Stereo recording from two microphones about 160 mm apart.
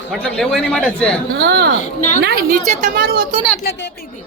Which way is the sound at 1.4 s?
90° right.